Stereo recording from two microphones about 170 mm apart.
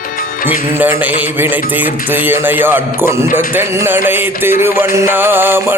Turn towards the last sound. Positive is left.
turn(degrees=-15)  # may be behind; listen again after turning